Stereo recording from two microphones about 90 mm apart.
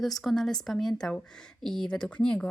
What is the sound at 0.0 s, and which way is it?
Speech, centre (ahead or behind).